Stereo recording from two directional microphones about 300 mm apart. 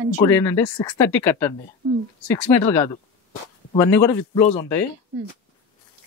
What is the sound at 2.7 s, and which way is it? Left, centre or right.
Speech, centre.